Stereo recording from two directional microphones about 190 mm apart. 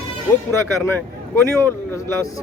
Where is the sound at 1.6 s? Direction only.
15° left (ahead or behind).